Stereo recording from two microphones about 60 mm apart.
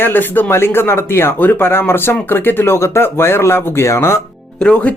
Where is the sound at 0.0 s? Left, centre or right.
Left.